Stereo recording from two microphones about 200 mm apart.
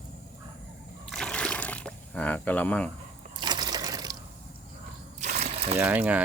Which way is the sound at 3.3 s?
20° right (ahead or behind).